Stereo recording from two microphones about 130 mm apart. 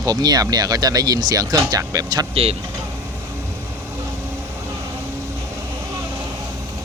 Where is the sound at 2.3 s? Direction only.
50° right (ahead or behind).